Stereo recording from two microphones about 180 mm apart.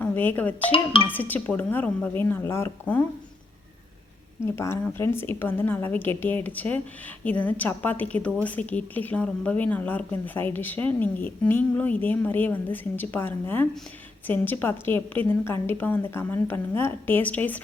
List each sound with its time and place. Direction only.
0.0 s speech: 10° left (ahead or behind)
0.7 s speech: 30° left (ahead or behind)
1.1 s a woman's voice: 10° left (ahead or behind)
4.5 s a woman's voice: 15° left (ahead or behind)